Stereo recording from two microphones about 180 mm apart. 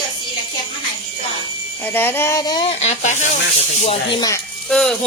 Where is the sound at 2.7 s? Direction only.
40° left (ahead or behind).